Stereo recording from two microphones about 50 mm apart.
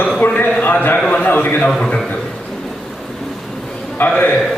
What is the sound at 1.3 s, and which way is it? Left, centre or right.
Speech, left.